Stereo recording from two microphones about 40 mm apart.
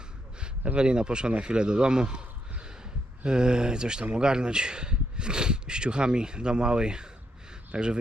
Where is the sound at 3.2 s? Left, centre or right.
Right.